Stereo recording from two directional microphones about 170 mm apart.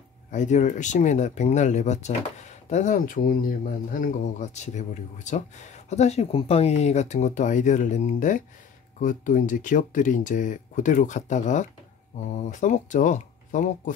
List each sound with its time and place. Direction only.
0.3 s speech: 45° left (ahead or behind)